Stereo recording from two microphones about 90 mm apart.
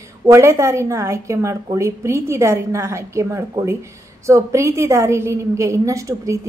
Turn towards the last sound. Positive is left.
turn(degrees=-35)  # may be behind; listen again after turning